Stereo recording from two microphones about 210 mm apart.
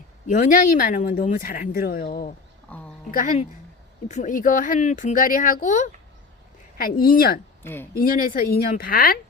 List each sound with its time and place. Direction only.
0.3 s speech: 40° left (ahead or behind)
2.6 s a sound: 5° left (ahead or behind)
3.1 s speech: 40° left (ahead or behind)
7.6 s speech: 10° left (ahead or behind)
7.9 s speech: 40° left (ahead or behind)